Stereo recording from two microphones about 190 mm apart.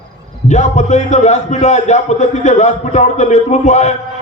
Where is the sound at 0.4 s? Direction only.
40° left (ahead or behind).